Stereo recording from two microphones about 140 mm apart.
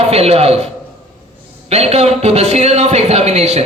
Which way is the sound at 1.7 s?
50° right (ahead or behind).